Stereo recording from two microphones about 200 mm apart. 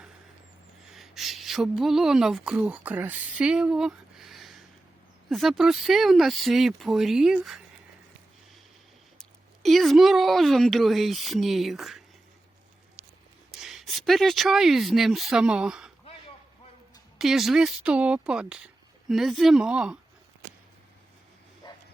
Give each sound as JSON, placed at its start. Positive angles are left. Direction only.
{"t": 0.9, "sound": "a woman's voice", "side_deg": 0}
{"t": 9.6, "sound": "speech", "side_deg": 0}
{"t": 13.5, "sound": "speech", "side_deg": 0}
{"t": 17.2, "sound": "speech", "side_deg": 0}
{"t": 21.6, "sound": "bow-wow", "side_deg": 20}